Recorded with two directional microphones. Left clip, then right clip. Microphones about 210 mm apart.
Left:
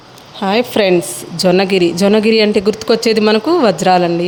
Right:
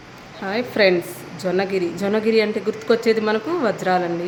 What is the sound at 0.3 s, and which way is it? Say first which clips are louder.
Speech: left 7 dB; 30° left (ahead or behind).